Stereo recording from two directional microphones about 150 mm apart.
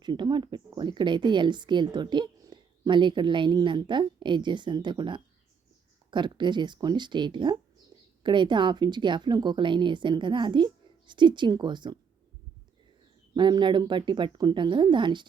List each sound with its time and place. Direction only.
0.0 s speech: 30° right (ahead or behind)
13.3 s speech: 30° right (ahead or behind)